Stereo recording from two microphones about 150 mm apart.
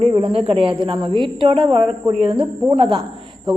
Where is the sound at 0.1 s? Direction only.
35° right (ahead or behind).